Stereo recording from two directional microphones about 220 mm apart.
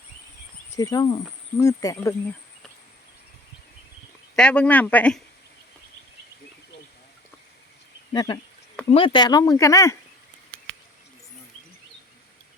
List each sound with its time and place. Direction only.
0.8 s speech: 15° left (ahead or behind)
4.4 s speech: 5° left (ahead or behind)
8.1 s speech: 20° left (ahead or behind)